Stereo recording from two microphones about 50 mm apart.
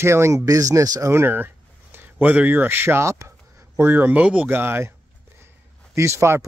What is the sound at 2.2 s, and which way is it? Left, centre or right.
Speech, right.